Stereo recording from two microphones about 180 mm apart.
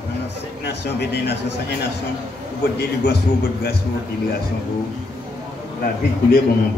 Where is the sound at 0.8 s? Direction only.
65° left (ahead or behind).